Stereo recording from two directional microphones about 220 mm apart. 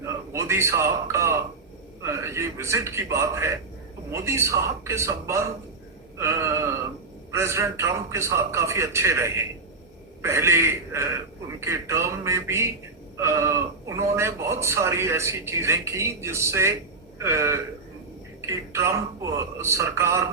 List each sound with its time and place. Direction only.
0.0 s a man's voice: 15° right (ahead or behind)